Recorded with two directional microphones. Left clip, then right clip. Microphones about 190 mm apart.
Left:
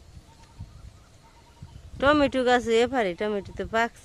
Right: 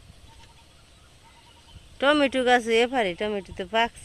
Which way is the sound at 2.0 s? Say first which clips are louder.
Even; 10° left (ahead or behind).